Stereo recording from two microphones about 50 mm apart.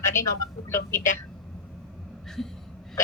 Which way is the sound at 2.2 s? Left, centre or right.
Centre.